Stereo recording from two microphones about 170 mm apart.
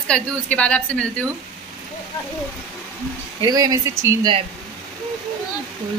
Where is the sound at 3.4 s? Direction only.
20° right (ahead or behind).